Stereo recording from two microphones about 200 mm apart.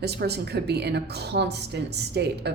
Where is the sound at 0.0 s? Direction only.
55° right (ahead or behind).